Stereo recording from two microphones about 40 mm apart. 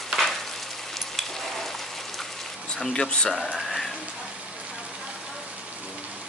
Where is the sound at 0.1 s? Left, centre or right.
Centre.